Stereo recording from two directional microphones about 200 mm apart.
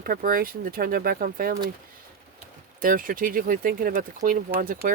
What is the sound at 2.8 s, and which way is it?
Speech, 45° right (ahead or behind).